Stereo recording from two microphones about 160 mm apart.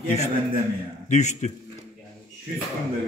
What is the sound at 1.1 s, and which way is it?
Speech, 45° left (ahead or behind).